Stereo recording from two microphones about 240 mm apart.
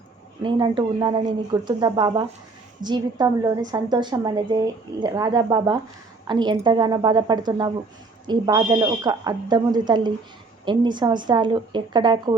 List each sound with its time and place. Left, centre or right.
0.4 s speech: centre